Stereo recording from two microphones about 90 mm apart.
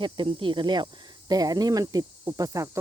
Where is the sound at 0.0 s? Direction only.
65° right (ahead or behind).